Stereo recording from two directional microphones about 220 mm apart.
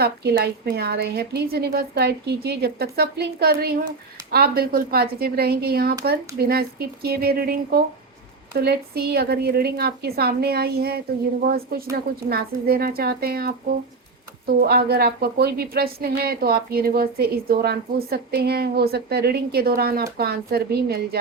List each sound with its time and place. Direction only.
0.0 s speech: 45° right (ahead or behind)
12.3 s speech: 45° right (ahead or behind)